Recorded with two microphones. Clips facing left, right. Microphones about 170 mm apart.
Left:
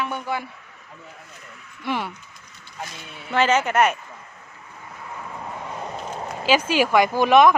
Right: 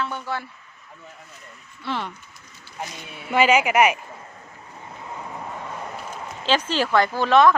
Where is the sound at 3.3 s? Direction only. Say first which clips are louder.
Right 1 dB; 10° right (ahead or behind).